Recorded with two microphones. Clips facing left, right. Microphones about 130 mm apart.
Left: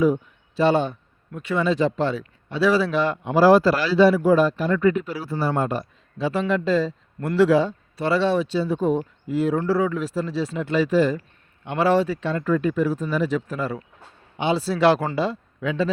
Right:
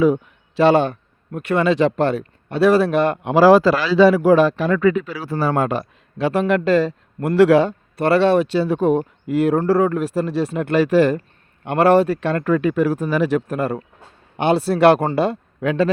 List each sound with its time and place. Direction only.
0.0 s a man's voice: 85° right; by 11.2 s 70° right (ahead or behind)
11.6 s a man's voice: 55° right (ahead or behind)